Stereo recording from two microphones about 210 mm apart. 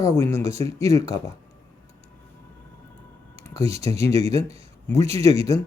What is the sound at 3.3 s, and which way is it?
Computer keyboard, 15° left (ahead or behind).